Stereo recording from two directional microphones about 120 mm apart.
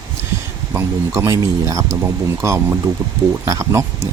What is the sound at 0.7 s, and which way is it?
Speech, 25° right (ahead or behind).